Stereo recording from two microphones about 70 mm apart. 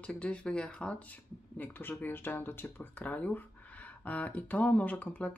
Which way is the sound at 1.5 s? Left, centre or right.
Left.